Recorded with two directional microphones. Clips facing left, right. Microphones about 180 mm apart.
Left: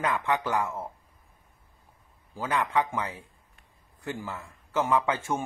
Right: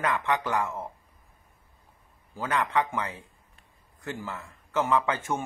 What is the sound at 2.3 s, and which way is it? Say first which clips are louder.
Speech: even; 10° left (ahead or behind).